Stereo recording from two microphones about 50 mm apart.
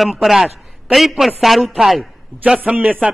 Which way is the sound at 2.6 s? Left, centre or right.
Right.